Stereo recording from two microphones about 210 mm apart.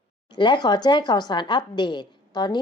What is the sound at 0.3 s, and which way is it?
A woman's voice, 20° left (ahead or behind).